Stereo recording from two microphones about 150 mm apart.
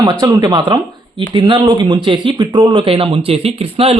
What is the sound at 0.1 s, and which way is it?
A woman's voice, 30° right (ahead or behind).